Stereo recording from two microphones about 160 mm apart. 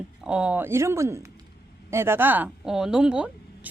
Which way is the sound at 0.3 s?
5° right (ahead or behind).